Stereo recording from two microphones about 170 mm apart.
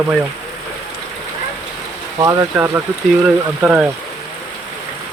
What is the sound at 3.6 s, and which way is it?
Speech, 5° right (ahead or behind).